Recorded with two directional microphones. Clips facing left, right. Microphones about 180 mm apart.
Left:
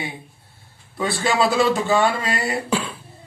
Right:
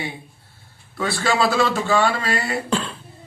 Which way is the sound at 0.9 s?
20° left (ahead or behind).